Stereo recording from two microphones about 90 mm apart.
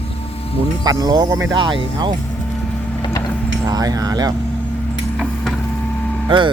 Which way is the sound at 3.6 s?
45° right (ahead or behind).